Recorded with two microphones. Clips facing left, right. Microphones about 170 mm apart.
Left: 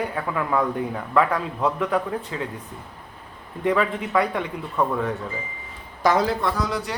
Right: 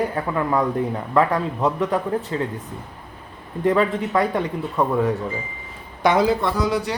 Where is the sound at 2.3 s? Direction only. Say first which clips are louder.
Right 5 dB; 40° right (ahead or behind).